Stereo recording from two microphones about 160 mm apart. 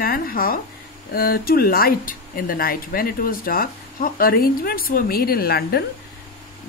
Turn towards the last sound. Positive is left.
turn(degrees=85)